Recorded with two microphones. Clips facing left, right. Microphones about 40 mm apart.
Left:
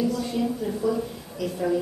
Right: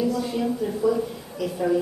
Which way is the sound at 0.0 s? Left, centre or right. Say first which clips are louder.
Right 1 dB; centre.